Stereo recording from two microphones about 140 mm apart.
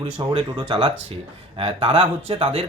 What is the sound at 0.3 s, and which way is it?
Speech, 40° right (ahead or behind).